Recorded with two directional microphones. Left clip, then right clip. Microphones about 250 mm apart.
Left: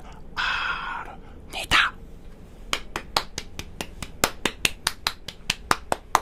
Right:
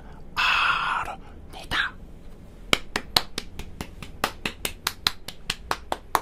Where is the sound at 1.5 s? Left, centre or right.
Centre.